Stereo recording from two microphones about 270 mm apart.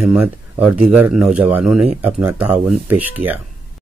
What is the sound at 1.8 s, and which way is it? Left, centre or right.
Speech, right.